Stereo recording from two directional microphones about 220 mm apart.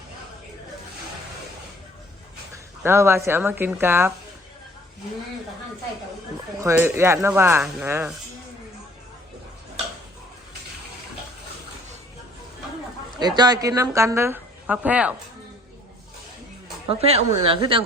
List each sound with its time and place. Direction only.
2.8 s a woman's voice: 10° right (ahead or behind)
6.6 s a woman's voice: 10° right (ahead or behind)
13.1 s a woman's voice: 20° right (ahead or behind)
16.9 s a woman's voice: 25° right (ahead or behind)